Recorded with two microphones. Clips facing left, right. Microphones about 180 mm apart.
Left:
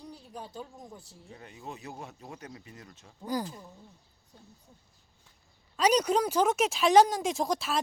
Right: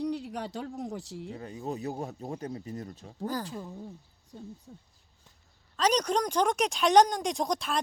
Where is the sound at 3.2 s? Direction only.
10° left (ahead or behind).